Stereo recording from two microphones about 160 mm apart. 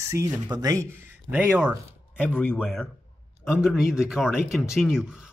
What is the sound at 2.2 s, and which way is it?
Speech, 10° left (ahead or behind).